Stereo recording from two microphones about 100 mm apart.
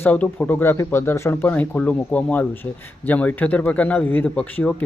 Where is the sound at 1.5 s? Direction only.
15° left (ahead or behind).